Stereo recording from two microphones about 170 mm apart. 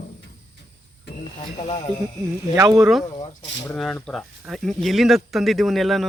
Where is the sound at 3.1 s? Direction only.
35° left (ahead or behind).